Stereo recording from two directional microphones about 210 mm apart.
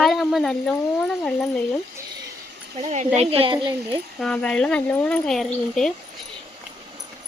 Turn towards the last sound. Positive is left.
turn(degrees=0)  # may be behind; listen again after turning